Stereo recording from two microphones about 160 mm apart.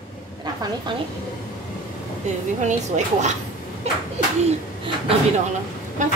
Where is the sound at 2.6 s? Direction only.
45° right (ahead or behind).